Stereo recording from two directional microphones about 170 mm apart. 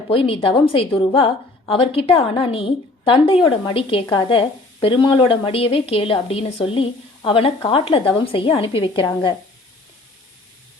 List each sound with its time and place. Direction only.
0.1 s speech: 30° left (ahead or behind)